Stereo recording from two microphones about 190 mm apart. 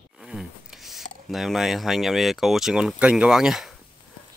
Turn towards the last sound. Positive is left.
turn(degrees=0)  # may be behind; listen again after turning